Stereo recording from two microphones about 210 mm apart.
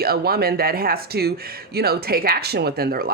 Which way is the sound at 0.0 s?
45° right (ahead or behind).